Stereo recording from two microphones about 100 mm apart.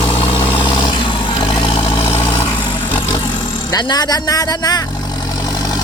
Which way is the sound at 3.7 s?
45° left (ahead or behind).